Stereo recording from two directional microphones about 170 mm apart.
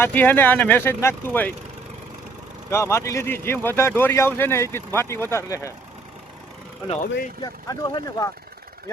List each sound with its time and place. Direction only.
0.0 s speech: 10° left (ahead or behind)
2.6 s speech: 15° left (ahead or behind)
6.8 s speech: 40° left (ahead or behind)
7.4 s speech: 25° left (ahead or behind)